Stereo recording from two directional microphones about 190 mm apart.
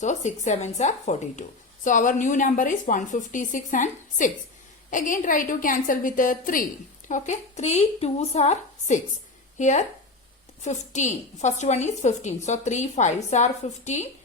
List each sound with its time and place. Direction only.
0.0 s a woman's voice: 40° left (ahead or behind)